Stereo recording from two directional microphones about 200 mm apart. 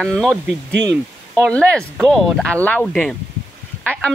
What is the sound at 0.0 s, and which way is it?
Speech, centre (ahead or behind).